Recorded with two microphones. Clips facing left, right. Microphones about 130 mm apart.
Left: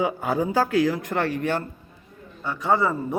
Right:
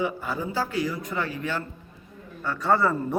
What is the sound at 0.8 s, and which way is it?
Speech, 90° left.